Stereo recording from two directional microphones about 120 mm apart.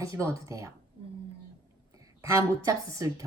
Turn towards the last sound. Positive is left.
turn(degrees=-30)  # may be behind; listen again after turning